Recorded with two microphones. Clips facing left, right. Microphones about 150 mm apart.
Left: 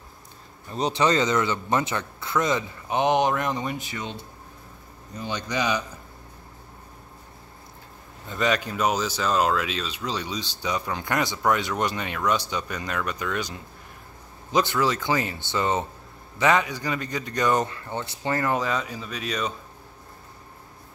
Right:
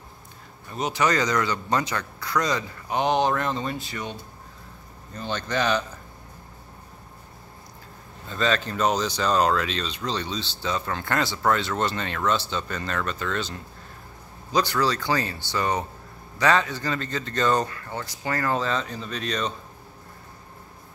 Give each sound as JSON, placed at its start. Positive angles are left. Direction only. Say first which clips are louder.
{"t": 0.7, "sound": "speech", "louder": "left 2 dB", "side_deg": 30}
{"t": 5.1, "sound": "speech", "louder": "right 1 dB", "side_deg": 15}
{"t": 8.3, "sound": "speech", "louder": "even", "side_deg": 15}